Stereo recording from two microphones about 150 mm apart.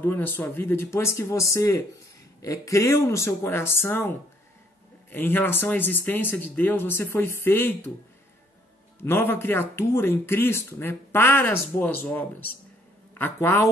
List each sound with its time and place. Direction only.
0.0 s speech: 15° left (ahead or behind)
9.0 s a man's voice: 15° left (ahead or behind)